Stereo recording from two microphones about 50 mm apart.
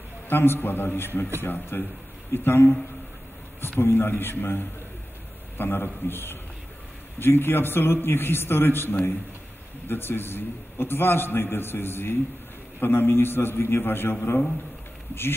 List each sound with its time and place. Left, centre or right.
0.3 s a man's voice: left
3.8 s a man's voice: left